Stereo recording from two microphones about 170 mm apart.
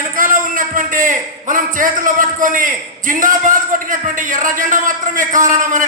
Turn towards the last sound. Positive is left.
turn(degrees=-50)  # may be behind; listen again after turning